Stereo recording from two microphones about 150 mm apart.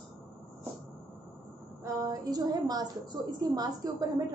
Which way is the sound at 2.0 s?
25° right (ahead or behind).